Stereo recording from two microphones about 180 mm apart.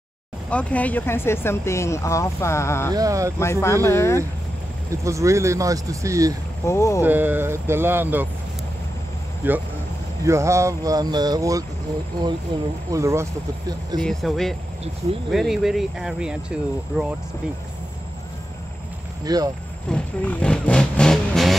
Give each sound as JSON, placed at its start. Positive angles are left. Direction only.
{"t": 0.5, "sound": "speech", "side_deg": 5}
{"t": 2.9, "sound": "speech", "side_deg": -20}
{"t": 3.3, "sound": "speech", "side_deg": 15}
{"t": 5.0, "sound": "speech", "side_deg": -15}
{"t": 6.6, "sound": "speech", "side_deg": 15}
{"t": 7.0, "sound": "speech", "side_deg": -10}
{"t": 9.4, "sound": "speech", "side_deg": -10}
{"t": 12.9, "sound": "speech", "side_deg": -15}
{"t": 14.0, "sound": "speech", "side_deg": 0}
{"t": 19.2, "sound": "speech", "side_deg": -20}
{"t": 19.9, "sound": "speech", "side_deg": 5}